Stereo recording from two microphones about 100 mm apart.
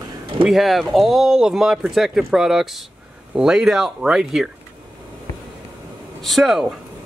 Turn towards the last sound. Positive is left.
turn(degrees=0)  # may be behind; listen again after turning